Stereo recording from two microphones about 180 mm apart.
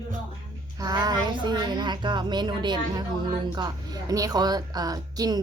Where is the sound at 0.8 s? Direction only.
20° right (ahead or behind).